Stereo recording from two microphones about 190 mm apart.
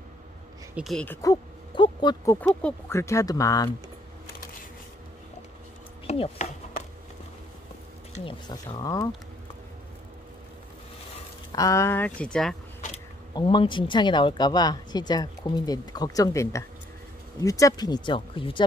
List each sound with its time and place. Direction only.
0.7 s speech: centre (ahead or behind); by 2.3 s 25° left (ahead or behind)
2.6 s speech: 15° left (ahead or behind)
6.0 s speech: 35° left (ahead or behind)
8.3 s speech: 25° left (ahead or behind)
11.5 s speech: 15° left (ahead or behind)
13.3 s speech: 25° left (ahead or behind)